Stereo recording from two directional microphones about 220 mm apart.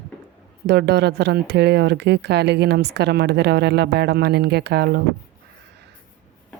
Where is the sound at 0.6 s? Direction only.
50° right (ahead or behind).